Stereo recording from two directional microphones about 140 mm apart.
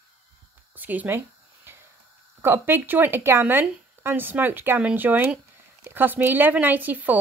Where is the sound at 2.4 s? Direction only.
15° right (ahead or behind).